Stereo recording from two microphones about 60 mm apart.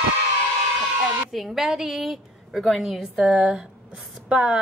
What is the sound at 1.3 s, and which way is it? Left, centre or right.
Speech, centre.